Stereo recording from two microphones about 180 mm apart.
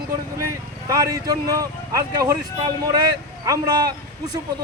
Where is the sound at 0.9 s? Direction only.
20° right (ahead or behind).